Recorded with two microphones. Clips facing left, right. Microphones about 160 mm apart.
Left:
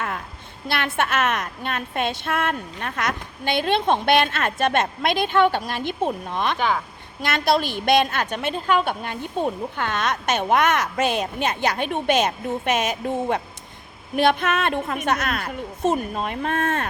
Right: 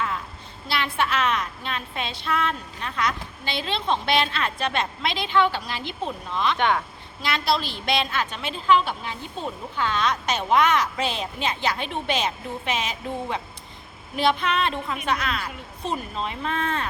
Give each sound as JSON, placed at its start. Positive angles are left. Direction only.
{"t": 0.7, "sound": "a woman's voice", "side_deg": 55}
{"t": 6.6, "sound": "speech", "side_deg": 0}
{"t": 7.2, "sound": "a woman's voice", "side_deg": 50}